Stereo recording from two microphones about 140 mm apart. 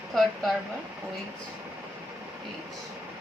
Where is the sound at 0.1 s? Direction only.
Centre (ahead or behind).